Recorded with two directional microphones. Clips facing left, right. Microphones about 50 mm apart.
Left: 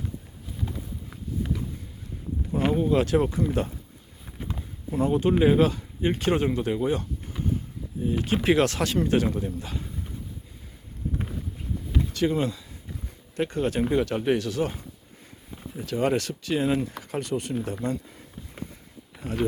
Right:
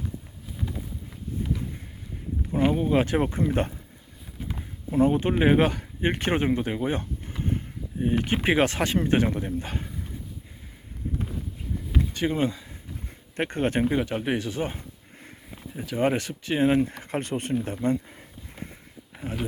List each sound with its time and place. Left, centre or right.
2.6 s a sound: centre
2.9 s speech: right
4.9 s speech: right
7.4 s a sound: right
8.4 s speech: right
12.1 s speech: right
13.3 s speech: right
13.9 s speech: centre; by 17.5 s right
18.0 s a sound: right